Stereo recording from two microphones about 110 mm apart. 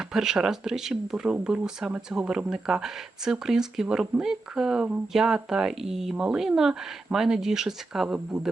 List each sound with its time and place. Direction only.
0.1 s speech: 5° right (ahead or behind)